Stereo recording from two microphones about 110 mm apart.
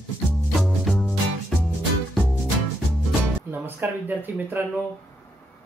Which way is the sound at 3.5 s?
15° right (ahead or behind).